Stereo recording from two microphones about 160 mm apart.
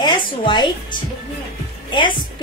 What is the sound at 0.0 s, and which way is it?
Speech, 30° left (ahead or behind).